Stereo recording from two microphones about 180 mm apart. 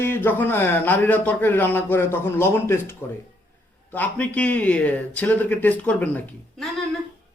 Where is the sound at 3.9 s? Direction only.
10° left (ahead or behind).